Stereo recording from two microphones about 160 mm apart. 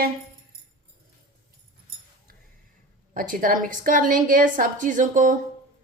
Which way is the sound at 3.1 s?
60° right (ahead or behind).